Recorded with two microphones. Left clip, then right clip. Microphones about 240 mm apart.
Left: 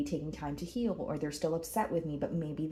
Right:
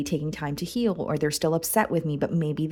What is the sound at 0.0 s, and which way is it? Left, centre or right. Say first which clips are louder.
Speech: right 7 dB; right.